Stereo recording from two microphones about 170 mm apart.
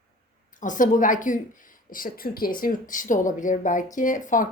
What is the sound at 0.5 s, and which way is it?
Speech, 50° left (ahead or behind).